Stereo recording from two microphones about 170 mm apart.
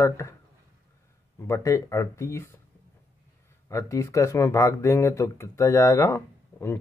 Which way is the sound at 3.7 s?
20° left (ahead or behind).